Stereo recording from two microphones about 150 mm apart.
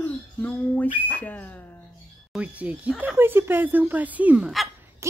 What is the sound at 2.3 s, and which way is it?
Speech, 10° right (ahead or behind).